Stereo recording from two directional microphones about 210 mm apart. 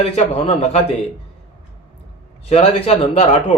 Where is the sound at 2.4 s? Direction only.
30° left (ahead or behind).